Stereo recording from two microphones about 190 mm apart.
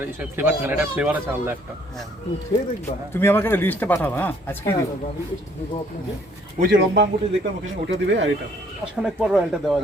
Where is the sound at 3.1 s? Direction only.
10° left (ahead or behind).